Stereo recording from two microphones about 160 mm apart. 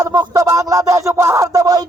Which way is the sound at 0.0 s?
20° right (ahead or behind).